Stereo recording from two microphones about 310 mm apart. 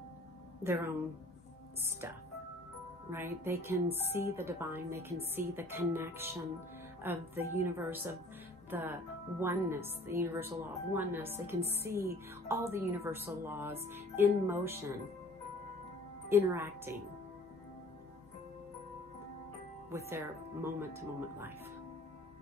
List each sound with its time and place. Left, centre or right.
0.7 s speech: centre
3.1 s speech: centre
16.3 s speech: centre
20.1 s speech: centre